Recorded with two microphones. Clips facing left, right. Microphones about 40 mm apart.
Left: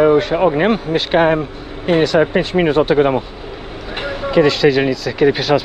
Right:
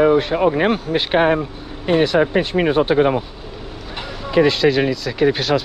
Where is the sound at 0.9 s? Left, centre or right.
Left.